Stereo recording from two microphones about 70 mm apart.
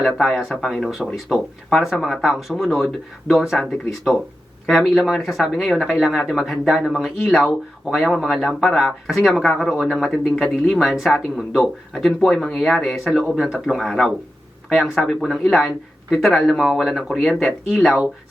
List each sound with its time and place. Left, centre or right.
0.0 s speech: centre
0.9 s speech: centre